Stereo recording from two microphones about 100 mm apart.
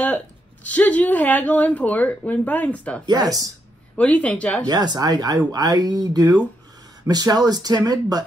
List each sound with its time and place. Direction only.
0.7 s speech: 15° left (ahead or behind)
3.1 s speech: 40° right (ahead or behind)
3.9 s speech: 15° left (ahead or behind)
4.6 s speech: 45° right (ahead or behind)